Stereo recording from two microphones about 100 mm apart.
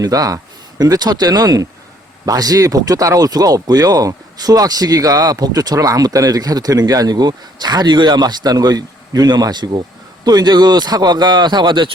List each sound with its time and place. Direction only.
0.0 s speech: 35° right (ahead or behind)